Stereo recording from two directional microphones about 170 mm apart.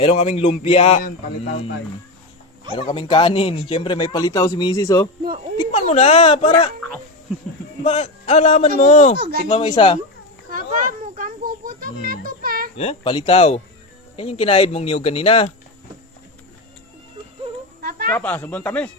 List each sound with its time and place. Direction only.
0.0 s speech: 40° left (ahead or behind)
2.7 s speech: 30° left (ahead or behind)
5.7 s speech: 40° left (ahead or behind)
7.9 s speech: 40° left (ahead or behind)
9.1 s speech: 70° right (ahead or behind)
9.5 s speech: 35° left (ahead or behind)
10.5 s a sound: 50° right (ahead or behind)
12.7 s speech: 35° left (ahead or behind)
17.8 s a sound: 55° right (ahead or behind)
18.1 s speech: 10° left (ahead or behind)